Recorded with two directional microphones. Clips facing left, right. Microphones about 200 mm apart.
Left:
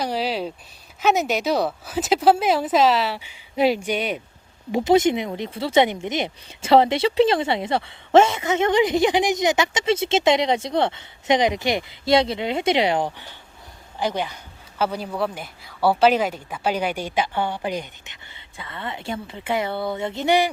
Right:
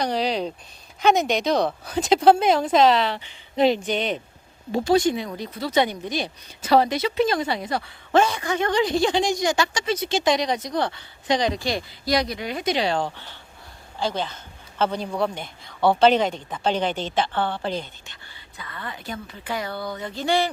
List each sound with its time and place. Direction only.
0.0 s speech: 5° left (ahead or behind)
4.7 s speech: 20° left (ahead or behind)